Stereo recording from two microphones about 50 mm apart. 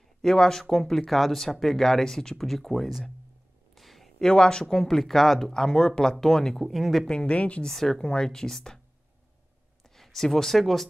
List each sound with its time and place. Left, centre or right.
0.2 s speech: centre
3.7 s a sound: centre
4.3 s speech: centre
7.1 s a woman's voice: left
7.6 s speech: centre
9.9 s speech: centre